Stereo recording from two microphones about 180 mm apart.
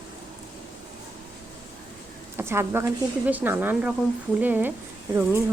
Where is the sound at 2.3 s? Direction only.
15° right (ahead or behind).